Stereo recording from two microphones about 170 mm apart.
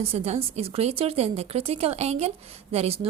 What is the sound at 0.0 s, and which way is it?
A woman's voice, 35° right (ahead or behind).